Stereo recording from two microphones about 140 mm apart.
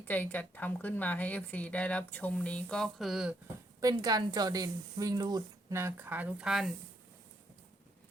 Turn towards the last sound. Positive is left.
turn(degrees=-5)  # may be behind; listen again after turning